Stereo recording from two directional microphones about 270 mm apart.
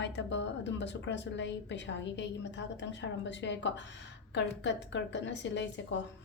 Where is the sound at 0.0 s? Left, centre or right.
Left.